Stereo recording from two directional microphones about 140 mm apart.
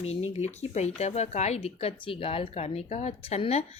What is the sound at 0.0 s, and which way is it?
Speech, 50° left (ahead or behind).